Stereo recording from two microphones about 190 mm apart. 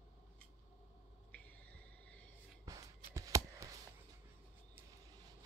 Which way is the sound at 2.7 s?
20° right (ahead or behind).